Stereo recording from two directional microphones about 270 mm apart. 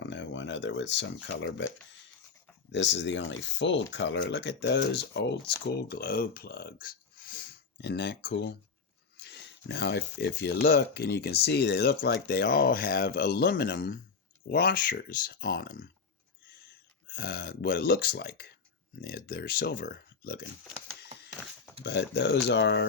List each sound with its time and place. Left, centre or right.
0.0 s a sound: left
2.7 s speech: left
17.1 s speech: left
21.8 s speech: left